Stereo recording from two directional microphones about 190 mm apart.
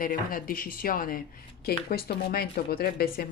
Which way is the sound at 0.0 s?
45° left (ahead or behind).